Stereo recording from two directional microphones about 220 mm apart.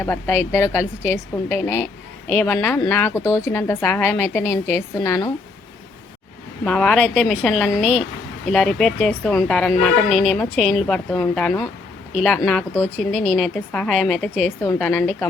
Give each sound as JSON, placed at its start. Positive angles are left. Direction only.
{"t": 0.0, "sound": "a woman's voice", "side_deg": 10}
{"t": 6.7, "sound": "a woman's voice", "side_deg": 5}
{"t": 14.6, "sound": "a woman's voice", "side_deg": 15}